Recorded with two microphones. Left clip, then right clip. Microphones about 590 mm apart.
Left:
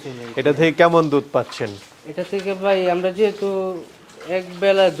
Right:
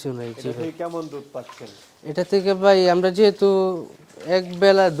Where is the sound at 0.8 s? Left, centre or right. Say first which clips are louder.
Left 15 dB; left.